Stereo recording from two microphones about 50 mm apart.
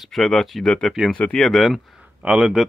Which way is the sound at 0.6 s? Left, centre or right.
Centre.